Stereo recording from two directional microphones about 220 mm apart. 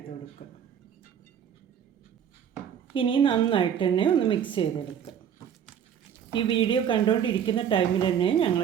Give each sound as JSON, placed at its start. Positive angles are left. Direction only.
{"t": 0.4, "sound": "a woman's voice", "side_deg": 30}
{"t": 2.9, "sound": "a woman's voice", "side_deg": 25}
{"t": 6.3, "sound": "a woman's voice", "side_deg": 20}